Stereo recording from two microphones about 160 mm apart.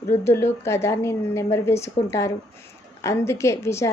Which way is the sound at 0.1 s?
15° left (ahead or behind).